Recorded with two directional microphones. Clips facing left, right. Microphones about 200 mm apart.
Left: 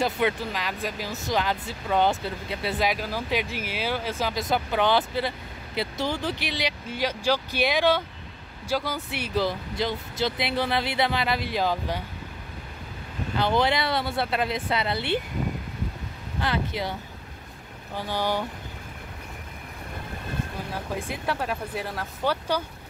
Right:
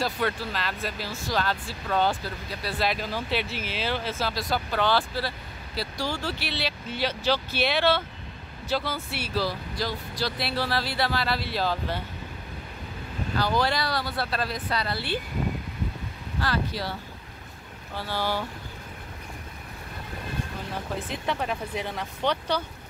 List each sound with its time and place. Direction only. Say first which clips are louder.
0.0 s speech: left 3 dB; 20° left (ahead or behind)
2.9 s speech: left 1 dB; 10° left (ahead or behind)
13.4 s speech: left 2 dB; 20° left (ahead or behind)
16.3 s speech: left 1 dB; 20° left (ahead or behind)
17.9 s speech: left 2 dB; 15° left (ahead or behind)
21.1 s speech: even; 5° left (ahead or behind)